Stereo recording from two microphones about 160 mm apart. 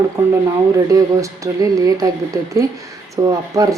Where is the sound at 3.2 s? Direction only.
20° right (ahead or behind).